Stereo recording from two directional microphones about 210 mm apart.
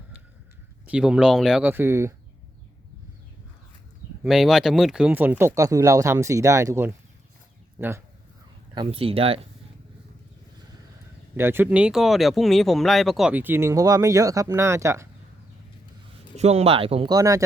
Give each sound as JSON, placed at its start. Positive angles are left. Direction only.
{"t": 0.9, "sound": "speech", "side_deg": -5}
{"t": 4.2, "sound": "speech", "side_deg": 0}
{"t": 8.7, "sound": "speech", "side_deg": -25}
{"t": 11.3, "sound": "speech", "side_deg": -10}
{"t": 16.4, "sound": "speech", "side_deg": -30}